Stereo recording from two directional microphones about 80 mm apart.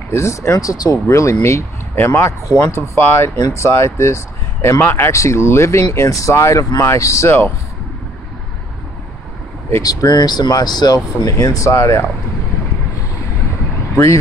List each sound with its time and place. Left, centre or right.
0.1 s speech: left
9.8 s speech: left
11.3 s speech: left